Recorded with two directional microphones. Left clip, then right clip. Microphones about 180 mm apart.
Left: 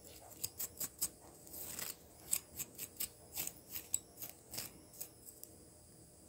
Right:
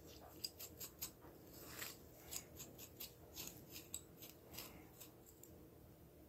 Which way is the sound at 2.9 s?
35° left (ahead or behind).